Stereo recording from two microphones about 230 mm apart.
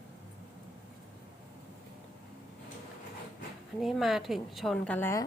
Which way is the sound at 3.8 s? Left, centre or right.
Centre.